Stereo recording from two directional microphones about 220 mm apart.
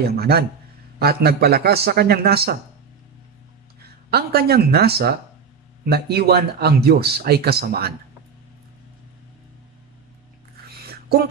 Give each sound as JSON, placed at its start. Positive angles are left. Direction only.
{"t": 0.0, "sound": "speech", "side_deg": -45}
{"t": 4.1, "sound": "speech", "side_deg": -45}
{"t": 10.9, "sound": "a sound", "side_deg": -45}